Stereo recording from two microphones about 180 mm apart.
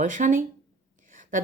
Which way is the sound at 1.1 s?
45° right (ahead or behind).